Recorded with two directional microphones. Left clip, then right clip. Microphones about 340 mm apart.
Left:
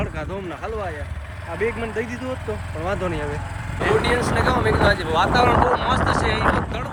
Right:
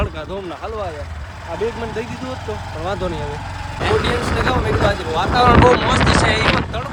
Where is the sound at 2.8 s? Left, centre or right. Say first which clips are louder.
Right 1 dB; centre.